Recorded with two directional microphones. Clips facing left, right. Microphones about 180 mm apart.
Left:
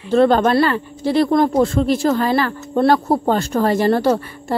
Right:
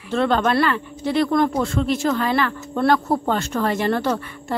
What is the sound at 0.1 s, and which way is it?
Speech, 40° left (ahead or behind).